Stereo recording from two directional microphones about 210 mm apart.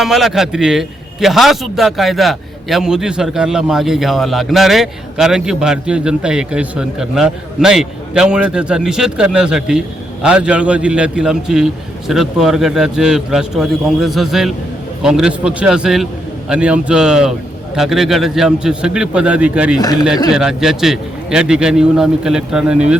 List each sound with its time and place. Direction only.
0.0 s a man's voice: centre (ahead or behind)
19.8 s speech: 20° left (ahead or behind)
20.3 s a man's voice: 5° right (ahead or behind)